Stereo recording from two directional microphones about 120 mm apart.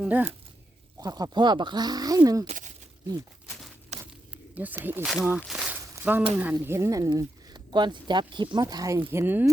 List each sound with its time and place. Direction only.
0.0 s speech: 15° right (ahead or behind)
0.9 s speech: 35° right (ahead or behind)
2.5 s a sound: 90° right
3.9 s walk: 70° right (ahead or behind)
4.5 s speech: 15° right (ahead or behind)
5.0 s speech: centre (ahead or behind)
5.5 s a sound: 5° right (ahead or behind)
6.0 s speech: 15° right (ahead or behind); by 8.6 s 40° right (ahead or behind)
8.6 s speech: 25° right (ahead or behind)
9.0 s speech: 15° right (ahead or behind)